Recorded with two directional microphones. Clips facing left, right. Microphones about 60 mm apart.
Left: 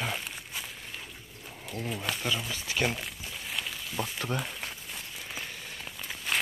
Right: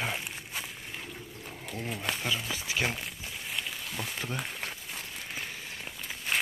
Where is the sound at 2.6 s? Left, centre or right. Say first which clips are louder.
Left 2 dB; centre.